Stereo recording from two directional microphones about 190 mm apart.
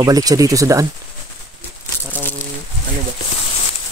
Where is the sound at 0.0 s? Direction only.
20° right (ahead or behind).